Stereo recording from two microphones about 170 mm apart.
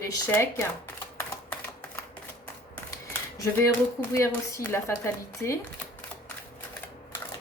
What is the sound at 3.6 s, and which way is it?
A woman's voice, 15° left (ahead or behind).